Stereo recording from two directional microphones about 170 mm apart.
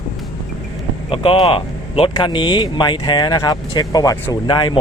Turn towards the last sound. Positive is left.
turn(degrees=25)  # may be behind; listen again after turning